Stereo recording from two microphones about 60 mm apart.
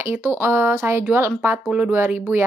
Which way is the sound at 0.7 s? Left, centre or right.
Right.